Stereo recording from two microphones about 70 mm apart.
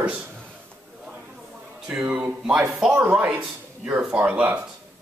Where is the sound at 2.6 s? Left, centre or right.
Centre.